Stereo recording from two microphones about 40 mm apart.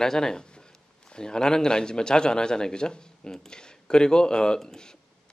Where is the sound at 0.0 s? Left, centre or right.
Centre.